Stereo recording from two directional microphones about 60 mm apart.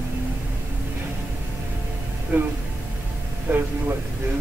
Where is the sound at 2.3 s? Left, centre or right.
Right.